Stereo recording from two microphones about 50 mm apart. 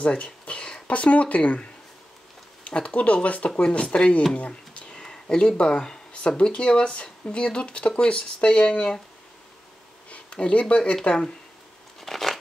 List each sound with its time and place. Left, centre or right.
0.0 s speech: left
10.0 s speech: left
12.0 s shuffling cards: centre